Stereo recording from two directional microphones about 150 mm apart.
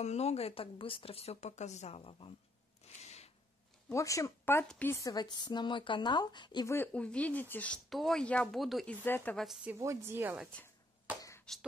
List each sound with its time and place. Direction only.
0.0 s a woman's voice: 45° left (ahead or behind)
2.8 s a sound: 45° left (ahead or behind)
3.9 s speech: 20° left (ahead or behind)
4.9 s speech: 25° left (ahead or behind)
6.7 s speech: 10° left (ahead or behind)
9.0 s speech: 10° left (ahead or behind)
9.8 s speech: 20° right (ahead or behind)
11.5 s speech: 5° left (ahead or behind)